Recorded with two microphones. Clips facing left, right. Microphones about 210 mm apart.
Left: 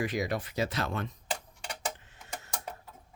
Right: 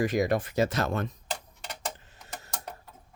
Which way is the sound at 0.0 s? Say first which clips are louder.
Right 6 dB; 45° right (ahead or behind).